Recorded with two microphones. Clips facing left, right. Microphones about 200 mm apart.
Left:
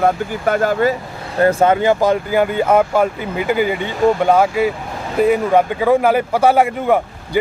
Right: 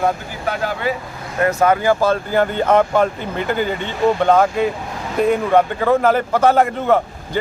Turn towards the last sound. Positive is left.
turn(degrees=10)  # may be behind; listen again after turning